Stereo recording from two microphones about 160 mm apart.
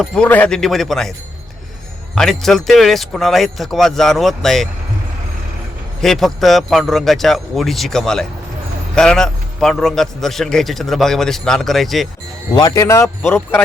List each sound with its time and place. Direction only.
0.0 s a man's voice: 5° left (ahead or behind)
2.1 s a man's voice: centre (ahead or behind)
6.0 s a man's voice: centre (ahead or behind)
12.5 s speech: 25° left (ahead or behind)